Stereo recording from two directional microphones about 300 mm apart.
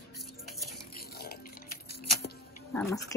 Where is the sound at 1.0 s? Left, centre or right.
Left.